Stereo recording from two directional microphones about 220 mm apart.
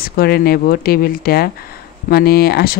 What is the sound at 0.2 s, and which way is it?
Speech, 45° left (ahead or behind).